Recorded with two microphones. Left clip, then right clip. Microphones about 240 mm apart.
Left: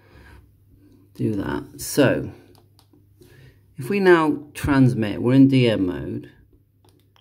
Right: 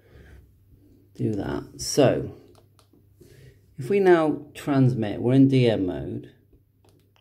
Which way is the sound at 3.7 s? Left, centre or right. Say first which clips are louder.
Left 2 dB; centre.